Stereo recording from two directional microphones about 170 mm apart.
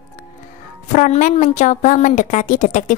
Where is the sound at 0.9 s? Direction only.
45° left (ahead or behind).